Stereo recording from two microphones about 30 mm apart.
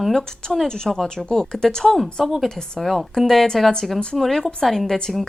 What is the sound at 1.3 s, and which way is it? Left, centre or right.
Speech, centre.